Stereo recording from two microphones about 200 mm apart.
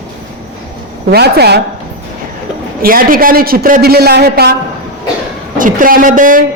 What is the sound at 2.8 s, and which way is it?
A man's voice, 45° right (ahead or behind).